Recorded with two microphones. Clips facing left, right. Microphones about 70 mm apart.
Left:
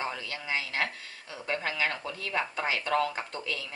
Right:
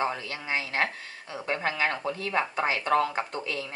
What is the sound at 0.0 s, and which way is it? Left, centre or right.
Speech, right.